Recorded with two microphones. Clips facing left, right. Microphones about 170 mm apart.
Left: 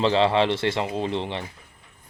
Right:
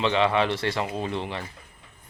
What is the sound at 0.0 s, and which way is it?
Speech, 30° left (ahead or behind).